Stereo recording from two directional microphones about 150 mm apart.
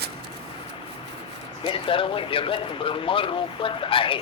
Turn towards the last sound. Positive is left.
turn(degrees=35)  # may be behind; listen again after turning